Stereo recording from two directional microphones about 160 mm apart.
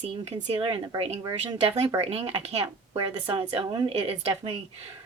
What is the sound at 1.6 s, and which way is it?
A woman's voice, 40° right (ahead or behind).